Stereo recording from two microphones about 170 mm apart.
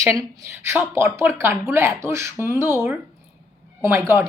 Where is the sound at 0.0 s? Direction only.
20° right (ahead or behind).